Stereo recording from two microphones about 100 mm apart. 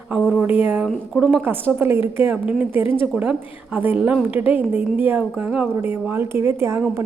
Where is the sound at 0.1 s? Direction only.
15° right (ahead or behind).